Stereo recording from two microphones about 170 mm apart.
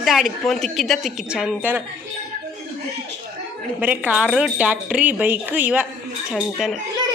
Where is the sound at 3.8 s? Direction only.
10° right (ahead or behind).